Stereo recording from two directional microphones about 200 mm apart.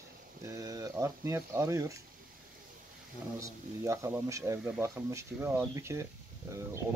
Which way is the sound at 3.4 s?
15° right (ahead or behind).